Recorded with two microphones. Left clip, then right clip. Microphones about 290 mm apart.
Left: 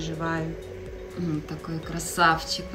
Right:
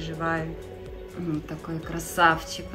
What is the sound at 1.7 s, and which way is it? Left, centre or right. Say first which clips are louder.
Speech: right 1 dB; centre.